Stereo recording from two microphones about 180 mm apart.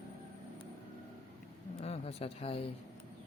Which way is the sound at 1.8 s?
35° left (ahead or behind).